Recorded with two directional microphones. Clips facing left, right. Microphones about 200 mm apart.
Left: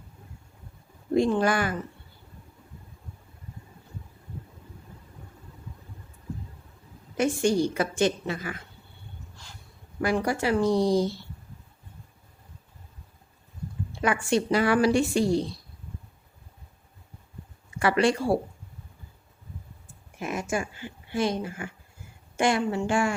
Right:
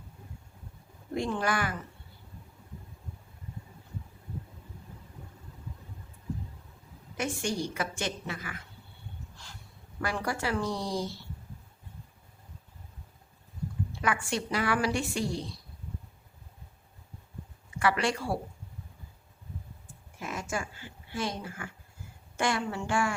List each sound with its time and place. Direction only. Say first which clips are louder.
1.1 s speech: left 8 dB; 30° left (ahead or behind)
7.2 s speech: left 9 dB; 30° left (ahead or behind)
10.0 s speech: left 7 dB; 15° left (ahead or behind)
14.0 s speech: left 7 dB; 25° left (ahead or behind)
17.7 s speech: left 6 dB; 30° left (ahead or behind)
20.1 s speech: left 6 dB; 15° left (ahead or behind)